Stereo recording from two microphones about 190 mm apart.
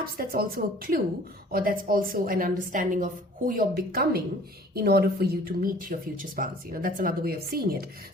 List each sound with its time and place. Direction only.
0.0 s speech: 50° right (ahead or behind)